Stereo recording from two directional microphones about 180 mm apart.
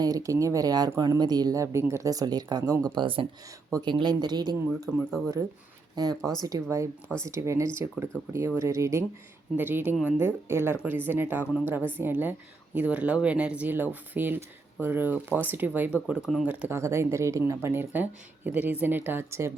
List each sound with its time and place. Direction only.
0.0 s speech: 20° right (ahead or behind)
6.0 s speech: 20° right (ahead or behind)